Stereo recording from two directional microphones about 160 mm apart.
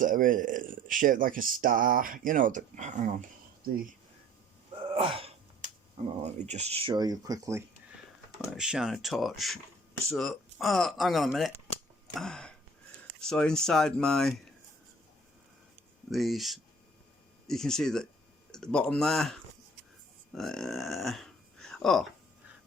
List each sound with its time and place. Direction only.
0.0 s speech: 55° right (ahead or behind)
4.9 s sneeze: 35° right (ahead or behind)
5.6 s a sound: 50° right (ahead or behind)
6.2 s speech: 45° right (ahead or behind); by 7.6 s 20° right (ahead or behind)
8.5 s speech: 5° right (ahead or behind)
12.1 s a sound: 5° left (ahead or behind)
13.2 s speech: 5° left (ahead or behind)
16.0 s speech: centre (ahead or behind)